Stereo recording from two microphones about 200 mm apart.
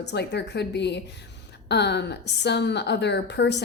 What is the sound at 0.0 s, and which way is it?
A woman's voice, 55° left (ahead or behind).